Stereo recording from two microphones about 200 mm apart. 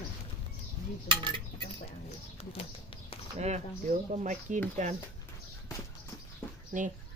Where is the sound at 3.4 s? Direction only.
35° right (ahead or behind).